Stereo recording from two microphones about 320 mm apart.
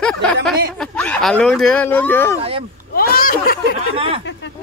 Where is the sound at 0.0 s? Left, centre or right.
Centre.